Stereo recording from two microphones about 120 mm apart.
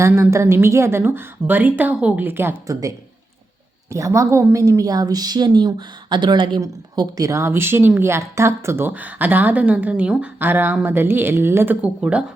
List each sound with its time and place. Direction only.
0.2 s a woman's voice: 25° right (ahead or behind)